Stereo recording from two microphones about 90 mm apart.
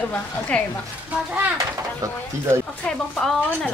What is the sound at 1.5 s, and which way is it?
Speech, 35° right (ahead or behind).